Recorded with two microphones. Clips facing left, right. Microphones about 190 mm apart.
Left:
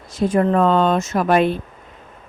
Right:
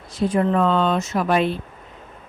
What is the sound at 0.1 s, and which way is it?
Speech, 45° left (ahead or behind).